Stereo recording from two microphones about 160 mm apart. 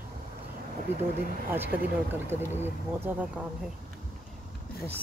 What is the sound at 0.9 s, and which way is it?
Speech, 15° right (ahead or behind).